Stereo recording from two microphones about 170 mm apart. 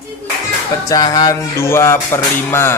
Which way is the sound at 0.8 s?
20° left (ahead or behind).